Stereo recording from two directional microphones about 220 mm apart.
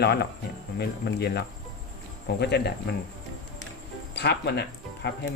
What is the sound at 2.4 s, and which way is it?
Speech, 50° left (ahead or behind).